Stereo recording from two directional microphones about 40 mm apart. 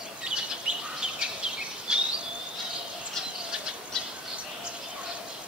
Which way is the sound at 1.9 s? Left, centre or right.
Centre.